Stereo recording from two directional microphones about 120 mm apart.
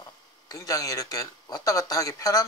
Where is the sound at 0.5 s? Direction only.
30° left (ahead or behind).